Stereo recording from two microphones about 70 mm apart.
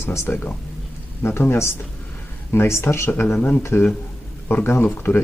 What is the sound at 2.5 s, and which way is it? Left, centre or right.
Speech, left.